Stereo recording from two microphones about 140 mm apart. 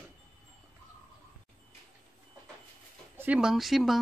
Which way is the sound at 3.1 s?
10° right (ahead or behind).